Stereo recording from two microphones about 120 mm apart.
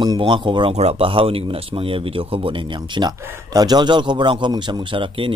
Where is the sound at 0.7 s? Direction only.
60° right (ahead or behind).